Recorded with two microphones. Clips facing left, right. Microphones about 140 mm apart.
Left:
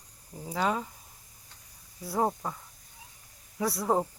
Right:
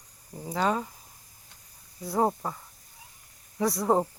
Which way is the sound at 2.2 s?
5° right (ahead or behind).